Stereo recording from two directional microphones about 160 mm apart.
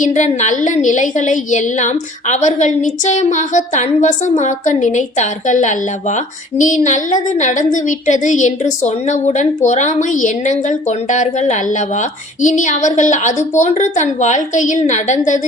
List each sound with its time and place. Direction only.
0.0 s a woman's voice: 50° left (ahead or behind)